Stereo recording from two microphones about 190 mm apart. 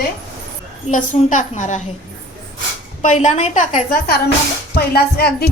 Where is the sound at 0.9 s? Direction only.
40° left (ahead or behind).